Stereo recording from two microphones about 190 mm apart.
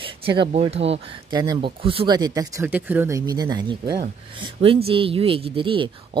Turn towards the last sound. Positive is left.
turn(degrees=-25)  # may be behind; listen again after turning